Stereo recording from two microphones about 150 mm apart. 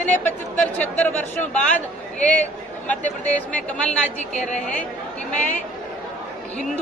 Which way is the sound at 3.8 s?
50° left (ahead or behind).